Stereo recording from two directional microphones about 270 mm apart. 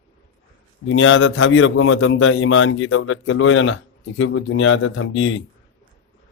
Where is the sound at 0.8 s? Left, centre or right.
Left.